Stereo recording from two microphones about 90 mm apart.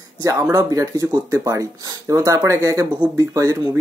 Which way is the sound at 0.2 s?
35° right (ahead or behind).